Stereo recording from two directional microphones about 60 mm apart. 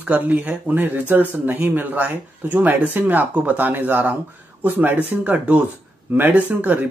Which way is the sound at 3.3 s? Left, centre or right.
Centre.